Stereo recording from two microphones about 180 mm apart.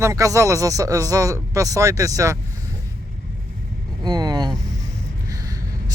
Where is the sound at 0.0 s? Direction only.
15° right (ahead or behind).